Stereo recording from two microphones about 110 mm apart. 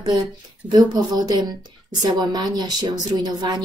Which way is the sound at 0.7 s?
35° right (ahead or behind).